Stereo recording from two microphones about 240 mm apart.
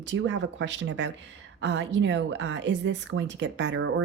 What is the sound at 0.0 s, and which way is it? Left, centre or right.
A woman's voice, right.